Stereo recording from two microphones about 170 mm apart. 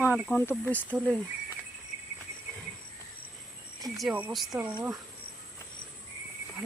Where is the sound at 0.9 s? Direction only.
5° right (ahead or behind).